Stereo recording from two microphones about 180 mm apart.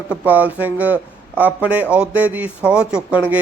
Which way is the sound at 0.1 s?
10° right (ahead or behind).